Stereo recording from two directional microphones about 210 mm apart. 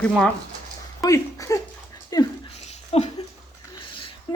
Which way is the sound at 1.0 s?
15° left (ahead or behind).